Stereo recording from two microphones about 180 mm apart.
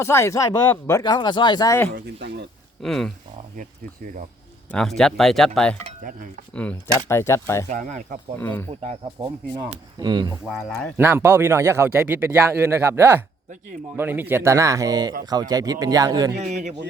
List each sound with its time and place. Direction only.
0.0 s speech: 15° left (ahead or behind)
2.0 s speech: 70° right (ahead or behind)
2.8 s speech: centre (ahead or behind)
4.7 s speech: centre (ahead or behind)
6.0 s cutlery: 50° right (ahead or behind)
6.5 s speech: 5° left (ahead or behind)
7.7 s speech: 45° right (ahead or behind)
8.4 s speech: 10° left (ahead or behind)
8.7 s a man's voice: 40° right (ahead or behind)
10.9 s a man's voice: 15° right (ahead or behind)